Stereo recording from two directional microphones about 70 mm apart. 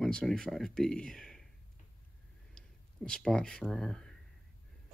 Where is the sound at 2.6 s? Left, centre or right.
Centre.